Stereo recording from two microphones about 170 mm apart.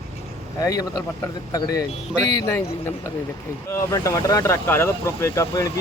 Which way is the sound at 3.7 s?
20° left (ahead or behind).